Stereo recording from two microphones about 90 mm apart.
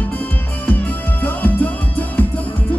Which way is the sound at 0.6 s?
20° left (ahead or behind).